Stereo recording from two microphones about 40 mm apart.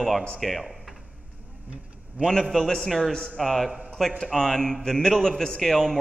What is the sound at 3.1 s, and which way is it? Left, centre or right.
Speech, centre.